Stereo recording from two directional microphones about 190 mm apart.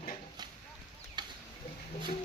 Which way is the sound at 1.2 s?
25° right (ahead or behind).